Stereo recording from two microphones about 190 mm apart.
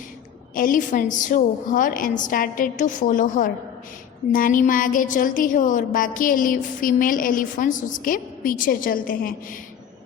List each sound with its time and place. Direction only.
0.5 s a woman's voice: 45° left (ahead or behind)